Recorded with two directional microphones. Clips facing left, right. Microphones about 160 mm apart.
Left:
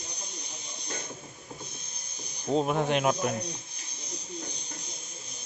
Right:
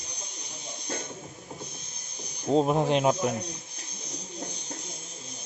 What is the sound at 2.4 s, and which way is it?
Speech, 30° right (ahead or behind).